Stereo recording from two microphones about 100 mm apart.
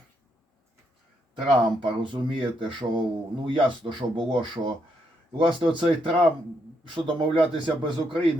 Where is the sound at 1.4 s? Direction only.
55° right (ahead or behind).